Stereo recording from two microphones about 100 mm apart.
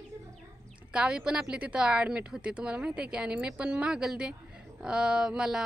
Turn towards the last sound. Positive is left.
turn(degrees=-5)  # may be behind; listen again after turning